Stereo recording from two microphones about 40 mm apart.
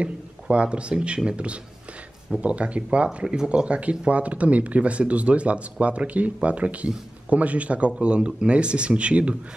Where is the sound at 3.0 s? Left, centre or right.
Centre.